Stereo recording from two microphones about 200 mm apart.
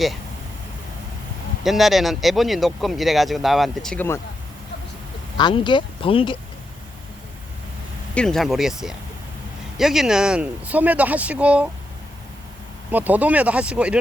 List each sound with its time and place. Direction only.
1.6 s speech: centre (ahead or behind)
5.4 s speech: 20° left (ahead or behind)
8.1 s speech: 5° left (ahead or behind)
12.9 s speech: 10° right (ahead or behind)